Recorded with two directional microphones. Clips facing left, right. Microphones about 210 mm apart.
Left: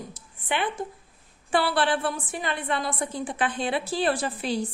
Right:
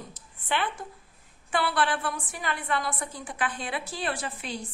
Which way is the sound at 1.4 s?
30° left (ahead or behind).